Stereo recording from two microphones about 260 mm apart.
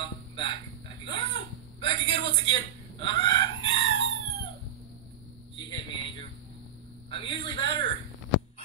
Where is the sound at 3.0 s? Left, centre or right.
Centre.